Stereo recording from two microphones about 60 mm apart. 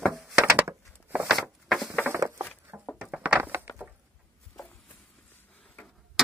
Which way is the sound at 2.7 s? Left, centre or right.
Right.